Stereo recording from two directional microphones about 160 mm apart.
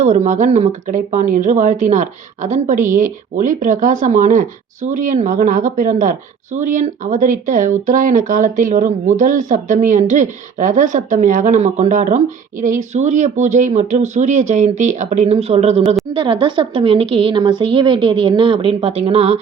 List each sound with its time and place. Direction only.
0.0 s a woman's voice: 45° right (ahead or behind)